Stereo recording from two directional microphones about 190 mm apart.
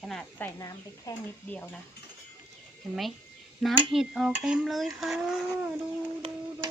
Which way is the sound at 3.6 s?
Centre (ahead or behind).